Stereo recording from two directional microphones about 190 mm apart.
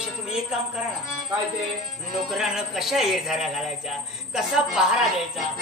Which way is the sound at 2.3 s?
Centre (ahead or behind).